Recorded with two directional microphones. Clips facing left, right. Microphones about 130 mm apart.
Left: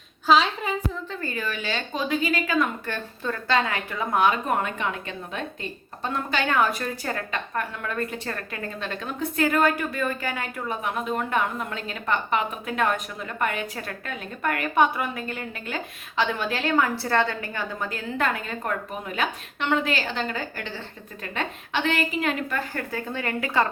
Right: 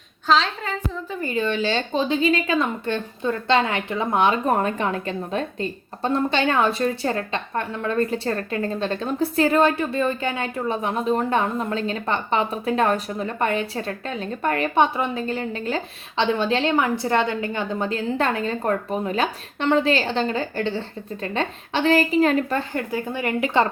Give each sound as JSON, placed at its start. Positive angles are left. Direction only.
{"t": 0.3, "sound": "a woman's voice", "side_deg": 10}
{"t": 1.1, "sound": "speech", "side_deg": -20}
{"t": 22.7, "sound": "speech", "side_deg": -15}